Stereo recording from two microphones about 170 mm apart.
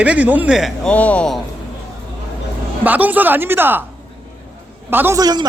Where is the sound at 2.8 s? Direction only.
10° right (ahead or behind).